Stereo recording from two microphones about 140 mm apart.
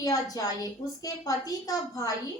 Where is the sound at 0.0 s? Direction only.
25° left (ahead or behind).